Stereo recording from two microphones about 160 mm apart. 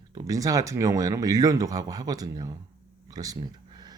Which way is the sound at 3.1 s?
25° right (ahead or behind).